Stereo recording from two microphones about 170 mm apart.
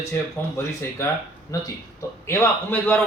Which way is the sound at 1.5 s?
20° left (ahead or behind).